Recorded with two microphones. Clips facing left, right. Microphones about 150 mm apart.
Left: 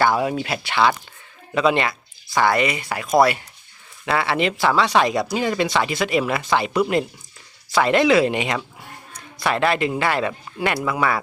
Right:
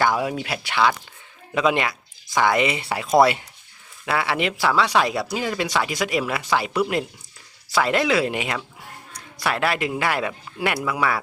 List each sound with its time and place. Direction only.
0.0 s speech: 10° right (ahead or behind)
4.0 s speech: 5° right (ahead or behind)